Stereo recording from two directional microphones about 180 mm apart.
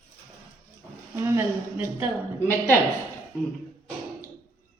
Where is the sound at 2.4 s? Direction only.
15° left (ahead or behind).